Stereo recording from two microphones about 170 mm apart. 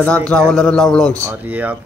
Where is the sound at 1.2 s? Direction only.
15° right (ahead or behind).